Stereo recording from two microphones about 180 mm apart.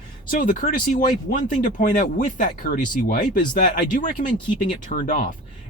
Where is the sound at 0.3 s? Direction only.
50° left (ahead or behind).